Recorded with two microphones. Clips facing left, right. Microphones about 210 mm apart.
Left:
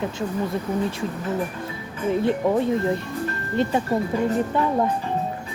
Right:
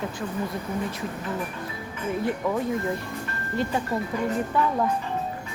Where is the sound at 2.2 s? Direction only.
30° left (ahead or behind).